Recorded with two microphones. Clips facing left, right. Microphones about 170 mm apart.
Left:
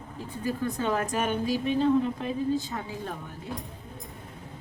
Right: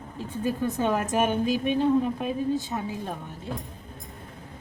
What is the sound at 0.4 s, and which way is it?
A woman's voice, 20° right (ahead or behind).